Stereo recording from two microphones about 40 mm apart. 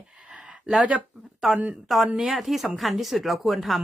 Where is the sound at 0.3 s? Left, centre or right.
Right.